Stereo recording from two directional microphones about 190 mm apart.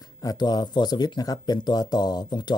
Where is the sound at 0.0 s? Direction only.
20° left (ahead or behind).